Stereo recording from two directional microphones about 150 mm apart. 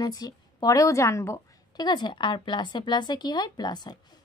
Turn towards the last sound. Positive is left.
turn(degrees=30)  # may be behind; listen again after turning